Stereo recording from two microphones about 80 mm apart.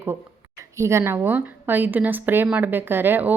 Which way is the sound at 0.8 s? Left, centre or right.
Right.